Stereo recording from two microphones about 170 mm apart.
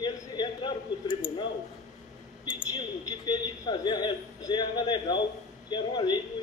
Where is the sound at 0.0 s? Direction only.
25° left (ahead or behind).